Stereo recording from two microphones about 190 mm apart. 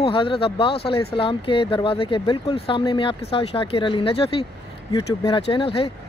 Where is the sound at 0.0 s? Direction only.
25° left (ahead or behind).